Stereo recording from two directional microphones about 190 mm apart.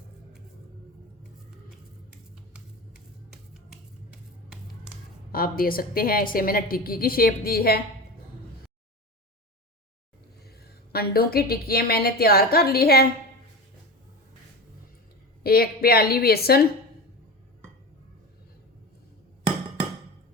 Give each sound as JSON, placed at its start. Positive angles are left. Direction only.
{"t": 5.3, "sound": "a woman's voice", "side_deg": 50}
{"t": 10.6, "sound": "a woman's voice", "side_deg": 55}
{"t": 15.4, "sound": "a woman's voice", "side_deg": 55}